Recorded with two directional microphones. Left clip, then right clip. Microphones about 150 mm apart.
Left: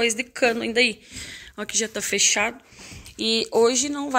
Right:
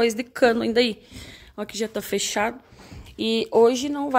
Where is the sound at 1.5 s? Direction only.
15° right (ahead or behind).